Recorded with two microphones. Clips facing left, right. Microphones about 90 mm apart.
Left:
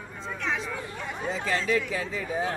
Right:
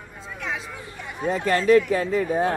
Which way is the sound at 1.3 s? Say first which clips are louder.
Right 9 dB; 55° right (ahead or behind).